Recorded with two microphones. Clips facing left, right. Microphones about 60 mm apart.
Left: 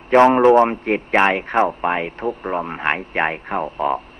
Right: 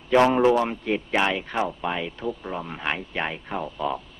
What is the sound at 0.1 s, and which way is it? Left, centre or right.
A man's voice, left.